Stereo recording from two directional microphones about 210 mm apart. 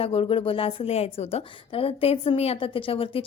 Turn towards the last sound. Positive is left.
turn(degrees=25)  # may be behind; listen again after turning